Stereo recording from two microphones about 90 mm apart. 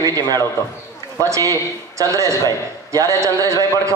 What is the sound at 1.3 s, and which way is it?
A man's voice, 40° right (ahead or behind).